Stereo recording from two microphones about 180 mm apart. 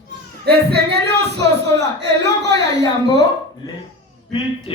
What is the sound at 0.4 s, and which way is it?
Singing, 65° right (ahead or behind).